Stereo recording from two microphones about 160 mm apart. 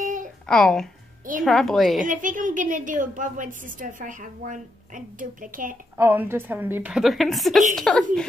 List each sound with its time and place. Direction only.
0.0 s a sound: 55° right (ahead or behind)
0.5 s a woman's voice: 5° left (ahead or behind)
2.0 s a woman's voice: 55° right (ahead or behind)
5.9 s a woman's voice: 15° right (ahead or behind); by 8.3 s 5° left (ahead or behind)